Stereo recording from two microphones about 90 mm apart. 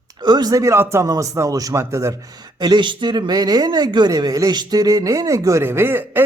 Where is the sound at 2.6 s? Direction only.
55° right (ahead or behind); by 5.6 s 35° right (ahead or behind).